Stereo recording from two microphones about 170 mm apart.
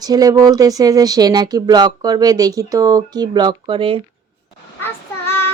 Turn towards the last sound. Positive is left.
turn(degrees=15)  # may be behind; listen again after turning